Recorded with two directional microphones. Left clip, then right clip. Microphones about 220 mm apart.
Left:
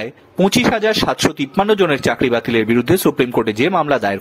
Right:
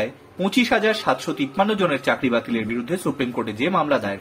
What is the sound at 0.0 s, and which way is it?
Speech, 45° left (ahead or behind).